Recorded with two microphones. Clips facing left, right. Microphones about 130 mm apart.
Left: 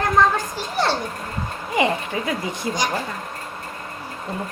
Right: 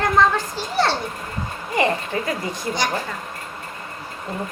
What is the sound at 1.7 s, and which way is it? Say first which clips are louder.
A woman's voice: even; 15° left (ahead or behind).